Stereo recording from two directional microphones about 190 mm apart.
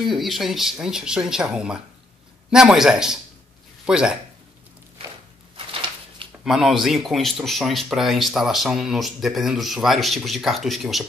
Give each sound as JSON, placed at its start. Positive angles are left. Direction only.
{"t": 0.0, "sound": "speech", "side_deg": 0}
{"t": 5.7, "sound": "a sound", "side_deg": -25}
{"t": 6.4, "sound": "speech", "side_deg": 0}